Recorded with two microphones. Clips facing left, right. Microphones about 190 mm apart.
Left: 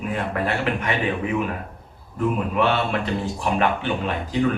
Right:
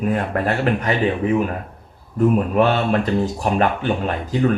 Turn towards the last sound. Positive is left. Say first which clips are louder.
# right 2 dB
turn(degrees=-45)  # may be behind; listen again after turning